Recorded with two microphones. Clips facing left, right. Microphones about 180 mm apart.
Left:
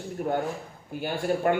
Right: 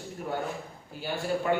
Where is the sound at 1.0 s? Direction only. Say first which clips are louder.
Left 4 dB; 55° left (ahead or behind).